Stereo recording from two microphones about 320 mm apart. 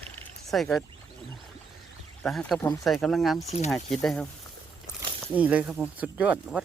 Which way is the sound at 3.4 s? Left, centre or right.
Centre.